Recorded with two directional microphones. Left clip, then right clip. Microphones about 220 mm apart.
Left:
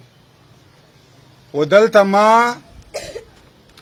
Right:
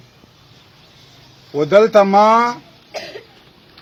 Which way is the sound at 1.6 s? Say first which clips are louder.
Even; 15° left (ahead or behind).